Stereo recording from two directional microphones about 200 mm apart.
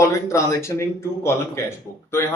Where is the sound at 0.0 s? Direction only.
15° left (ahead or behind).